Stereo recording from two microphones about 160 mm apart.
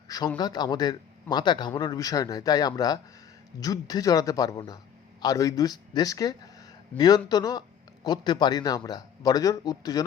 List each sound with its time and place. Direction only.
0.3 s speech: 25° left (ahead or behind)